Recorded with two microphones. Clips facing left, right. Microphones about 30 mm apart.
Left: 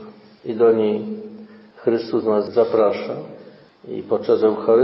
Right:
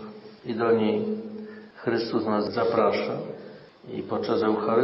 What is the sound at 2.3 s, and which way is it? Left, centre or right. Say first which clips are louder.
Speech: left 8 dB; centre.